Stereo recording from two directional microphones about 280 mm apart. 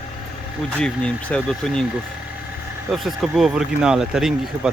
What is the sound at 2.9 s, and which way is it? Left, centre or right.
Speech, centre.